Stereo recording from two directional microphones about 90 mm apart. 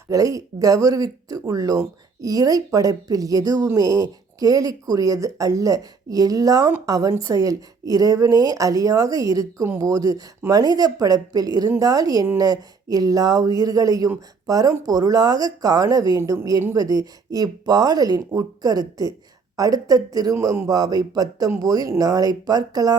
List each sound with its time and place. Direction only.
0.1 s a woman's voice: 40° right (ahead or behind)